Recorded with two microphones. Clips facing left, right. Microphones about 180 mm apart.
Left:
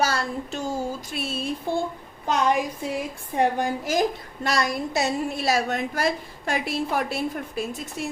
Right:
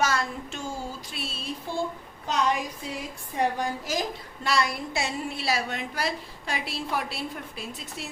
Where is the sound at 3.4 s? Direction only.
55° left (ahead or behind).